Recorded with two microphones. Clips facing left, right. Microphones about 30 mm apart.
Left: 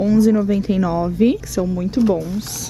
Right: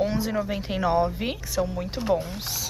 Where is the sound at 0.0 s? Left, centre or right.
Centre.